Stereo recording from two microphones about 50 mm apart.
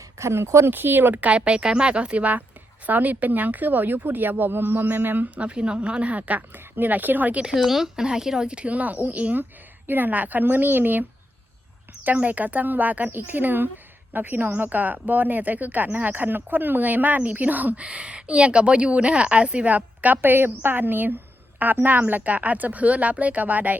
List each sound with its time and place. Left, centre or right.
0.2 s speech: right
0.7 s a woman's voice: right
5.3 s a woman's voice: right
7.5 s speech: centre; by 11.0 s right
12.2 s speech: right
17.8 s a woman's voice: right